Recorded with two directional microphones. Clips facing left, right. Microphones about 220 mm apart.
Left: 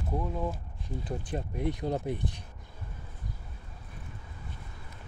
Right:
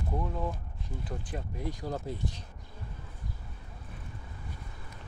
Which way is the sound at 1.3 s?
35° left (ahead or behind).